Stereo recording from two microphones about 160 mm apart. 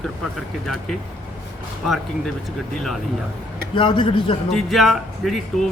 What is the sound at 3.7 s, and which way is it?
Speech, 30° left (ahead or behind).